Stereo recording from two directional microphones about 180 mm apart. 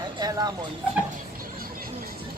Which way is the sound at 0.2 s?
20° right (ahead or behind).